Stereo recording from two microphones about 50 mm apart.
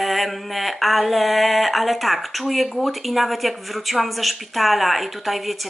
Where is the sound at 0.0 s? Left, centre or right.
Centre.